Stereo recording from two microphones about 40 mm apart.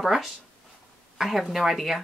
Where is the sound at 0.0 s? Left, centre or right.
Centre.